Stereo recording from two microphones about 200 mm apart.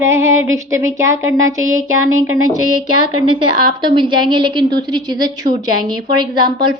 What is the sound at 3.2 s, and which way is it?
A woman's voice, 25° right (ahead or behind).